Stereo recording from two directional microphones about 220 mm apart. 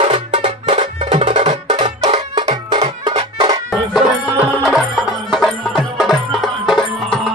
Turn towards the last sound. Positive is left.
turn(degrees=0)  # may be behind; listen again after turning